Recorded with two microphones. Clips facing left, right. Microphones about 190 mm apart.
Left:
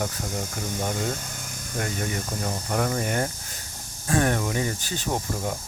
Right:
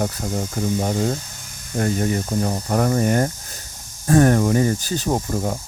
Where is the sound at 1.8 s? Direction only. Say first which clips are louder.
Right 8 dB; 35° right (ahead or behind).